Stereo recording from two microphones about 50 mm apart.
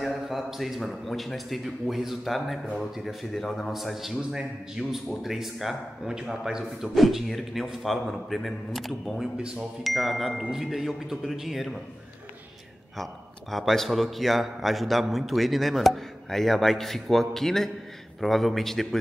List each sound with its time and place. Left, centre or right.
0.0 s a man's voice: centre
4.2 s a man's voice: centre
4.7 s a man's voice: centre
12.9 s a man's voice: centre